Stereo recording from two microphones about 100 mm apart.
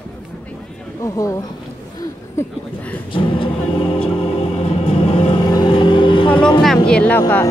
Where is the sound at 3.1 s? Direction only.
60° left (ahead or behind); by 5.4 s 90° left.